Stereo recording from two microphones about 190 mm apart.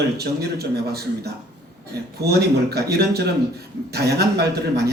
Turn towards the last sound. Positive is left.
turn(degrees=-55)  # may be behind; listen again after turning